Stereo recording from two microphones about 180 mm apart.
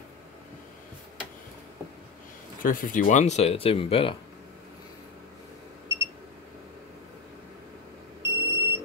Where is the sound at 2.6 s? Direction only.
50° left (ahead or behind); by 4.1 s 30° left (ahead or behind).